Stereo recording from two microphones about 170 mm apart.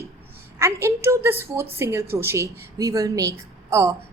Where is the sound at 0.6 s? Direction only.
15° right (ahead or behind).